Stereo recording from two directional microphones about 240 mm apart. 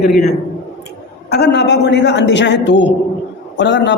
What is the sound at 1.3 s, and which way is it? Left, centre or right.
A man's voice, left.